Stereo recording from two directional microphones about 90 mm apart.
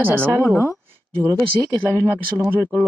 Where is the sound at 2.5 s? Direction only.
25° right (ahead or behind).